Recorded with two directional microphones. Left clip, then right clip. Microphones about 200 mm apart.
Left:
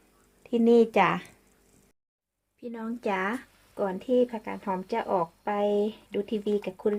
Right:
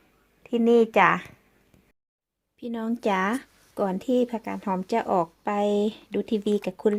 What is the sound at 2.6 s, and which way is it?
Speech, 45° right (ahead or behind).